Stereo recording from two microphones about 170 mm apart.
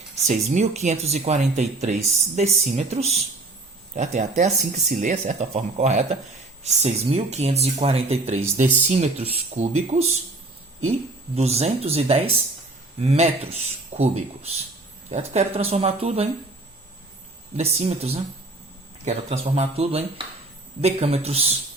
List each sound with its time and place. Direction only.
0.3 s speech: 40° right (ahead or behind)
11.3 s speech: 40° right (ahead or behind)
17.6 s speech: 40° right (ahead or behind)